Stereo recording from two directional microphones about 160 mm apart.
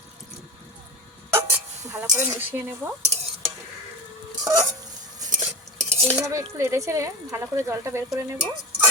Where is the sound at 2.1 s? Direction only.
15° right (ahead or behind).